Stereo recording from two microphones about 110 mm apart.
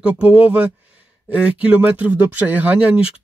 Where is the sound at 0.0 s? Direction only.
10° right (ahead or behind).